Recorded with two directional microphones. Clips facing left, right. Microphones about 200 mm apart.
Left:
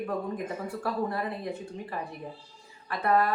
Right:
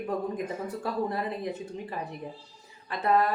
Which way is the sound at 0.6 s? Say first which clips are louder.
Left 1 dB; 20° right (ahead or behind).